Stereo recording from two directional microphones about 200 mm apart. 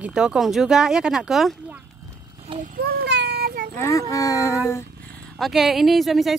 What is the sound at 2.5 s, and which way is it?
Speech, 25° right (ahead or behind).